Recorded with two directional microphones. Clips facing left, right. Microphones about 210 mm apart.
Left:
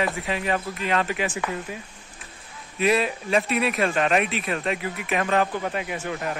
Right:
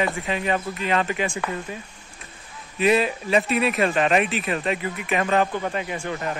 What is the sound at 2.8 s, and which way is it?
Speech, centre (ahead or behind).